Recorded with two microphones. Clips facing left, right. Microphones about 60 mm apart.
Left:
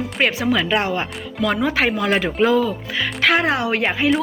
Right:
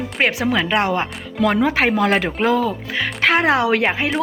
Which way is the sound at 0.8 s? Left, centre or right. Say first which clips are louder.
Right 2 dB; right.